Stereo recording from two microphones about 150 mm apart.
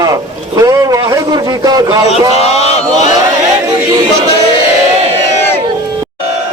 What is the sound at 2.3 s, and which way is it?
Speech, 45° left (ahead or behind).